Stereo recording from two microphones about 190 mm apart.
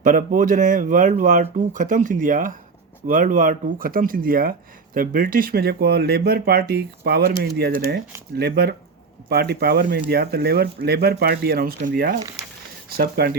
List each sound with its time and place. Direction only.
0.0 s speech: 45° right (ahead or behind)